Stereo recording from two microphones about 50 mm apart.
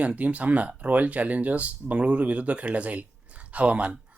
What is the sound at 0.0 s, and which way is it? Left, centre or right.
Speech, right.